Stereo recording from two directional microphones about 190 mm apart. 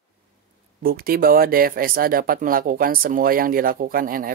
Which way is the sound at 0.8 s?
50° right (ahead or behind).